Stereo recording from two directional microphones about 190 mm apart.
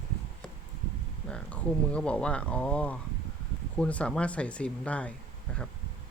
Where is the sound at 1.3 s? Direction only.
5° left (ahead or behind).